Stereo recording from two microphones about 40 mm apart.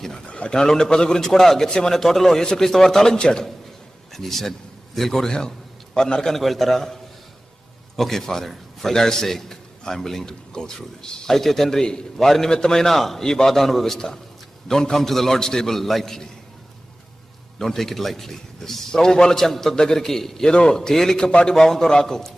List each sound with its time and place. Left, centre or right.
0.3 s a sound: left
0.5 s a man's voice: centre
1.6 s a man's voice: centre
1.9 s a man's voice: centre
3.2 s a man's voice: left
4.1 s a man's voice: centre
6.3 s a man's voice: centre
17.6 s a man's voice: centre
20.5 s a man's voice: left
20.7 s a man's voice: centre